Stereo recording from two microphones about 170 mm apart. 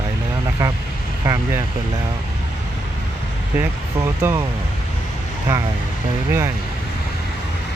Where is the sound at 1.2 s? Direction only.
20° right (ahead or behind).